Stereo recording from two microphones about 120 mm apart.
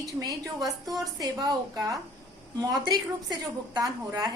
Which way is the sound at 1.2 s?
35° right (ahead or behind).